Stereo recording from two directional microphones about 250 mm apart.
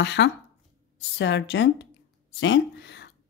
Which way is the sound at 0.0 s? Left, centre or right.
Left.